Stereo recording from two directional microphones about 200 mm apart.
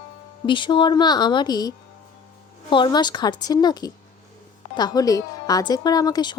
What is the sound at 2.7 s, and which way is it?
A woman's voice, 25° left (ahead or behind).